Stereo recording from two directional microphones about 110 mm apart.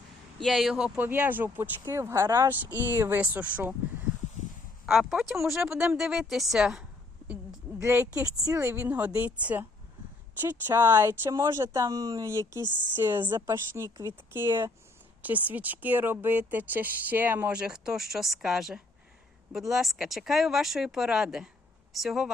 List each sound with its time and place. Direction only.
0.4 s speech: centre (ahead or behind)
0.9 s speech: 15° right (ahead or behind)
4.9 s speech: 5° right (ahead or behind)
7.9 s speech: 10° right (ahead or behind)
8.4 s speech: 20° right (ahead or behind); by 22.3 s centre (ahead or behind)